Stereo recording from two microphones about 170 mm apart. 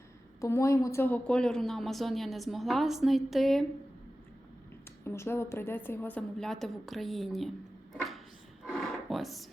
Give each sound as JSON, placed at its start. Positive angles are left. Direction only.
{"t": 0.4, "sound": "speech", "side_deg": 15}
{"t": 5.0, "sound": "a woman's voice", "side_deg": 15}
{"t": 8.6, "sound": "a sound", "side_deg": 0}